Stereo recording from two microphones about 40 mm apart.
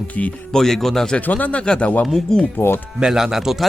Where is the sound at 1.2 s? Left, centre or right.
Left.